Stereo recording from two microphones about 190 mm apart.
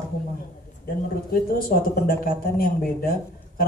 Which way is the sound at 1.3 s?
50° left (ahead or behind).